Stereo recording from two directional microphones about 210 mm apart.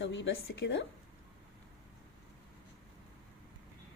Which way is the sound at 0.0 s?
60° left (ahead or behind).